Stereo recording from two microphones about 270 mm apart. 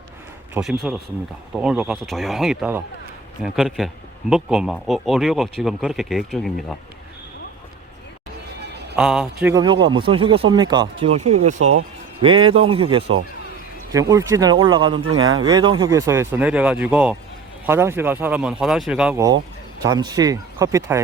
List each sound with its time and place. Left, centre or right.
0.5 s speech: centre
8.6 s music: right
9.0 s a man's voice: centre; by 11.3 s right
11.6 s speech: right
12.2 s a man's voice: centre
15.0 s speech: right
15.4 s a man's voice: centre